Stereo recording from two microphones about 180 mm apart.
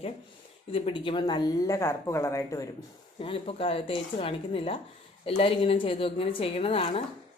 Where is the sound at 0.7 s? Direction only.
30° left (ahead or behind).